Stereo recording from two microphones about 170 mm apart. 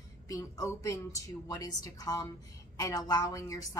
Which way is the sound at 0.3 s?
20° left (ahead or behind).